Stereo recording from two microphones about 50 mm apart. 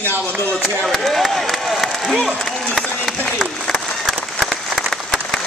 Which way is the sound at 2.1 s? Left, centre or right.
Centre.